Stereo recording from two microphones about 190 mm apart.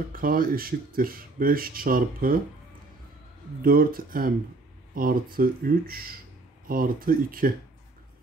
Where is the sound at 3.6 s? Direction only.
50° right (ahead or behind).